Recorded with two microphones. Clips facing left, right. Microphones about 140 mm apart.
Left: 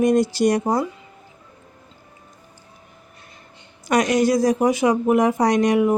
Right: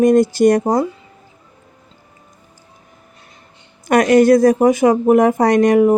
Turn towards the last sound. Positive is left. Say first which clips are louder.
# right 5 dB
turn(degrees=-45)  # may be behind; listen again after turning